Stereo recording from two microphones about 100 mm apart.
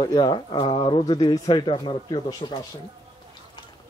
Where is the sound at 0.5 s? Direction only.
70° left (ahead or behind); by 2.6 s 45° left (ahead or behind).